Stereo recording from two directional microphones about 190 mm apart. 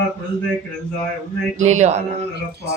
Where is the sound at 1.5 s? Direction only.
40° right (ahead or behind).